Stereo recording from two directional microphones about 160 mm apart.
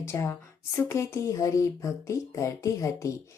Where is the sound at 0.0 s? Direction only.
15° left (ahead or behind).